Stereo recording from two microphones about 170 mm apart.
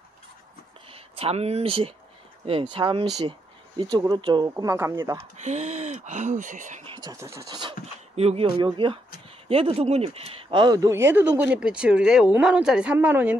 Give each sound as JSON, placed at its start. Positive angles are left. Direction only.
{"t": 0.8, "sound": "speech", "side_deg": -35}
{"t": 5.4, "sound": "speech", "side_deg": -40}
{"t": 6.8, "sound": "speech", "side_deg": -25}
{"t": 8.2, "sound": "a man's voice", "side_deg": -35}